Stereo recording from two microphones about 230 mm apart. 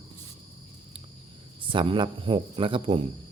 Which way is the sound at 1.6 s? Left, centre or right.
Right.